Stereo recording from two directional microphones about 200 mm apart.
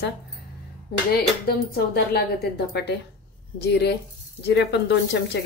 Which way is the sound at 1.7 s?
50° left (ahead or behind).